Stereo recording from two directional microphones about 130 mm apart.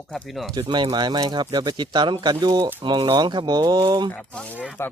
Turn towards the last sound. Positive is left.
turn(degrees=20)  # may be behind; listen again after turning